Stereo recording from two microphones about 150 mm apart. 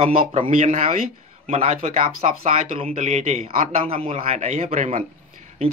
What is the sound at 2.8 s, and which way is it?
A man's voice, 50° right (ahead or behind).